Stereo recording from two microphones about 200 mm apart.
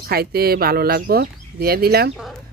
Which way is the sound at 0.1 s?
50° right (ahead or behind).